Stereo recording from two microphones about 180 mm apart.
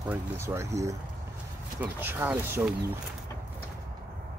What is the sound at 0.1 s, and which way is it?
Speech, 15° right (ahead or behind).